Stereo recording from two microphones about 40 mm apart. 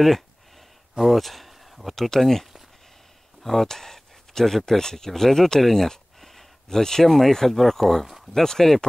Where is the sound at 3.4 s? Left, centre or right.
Centre.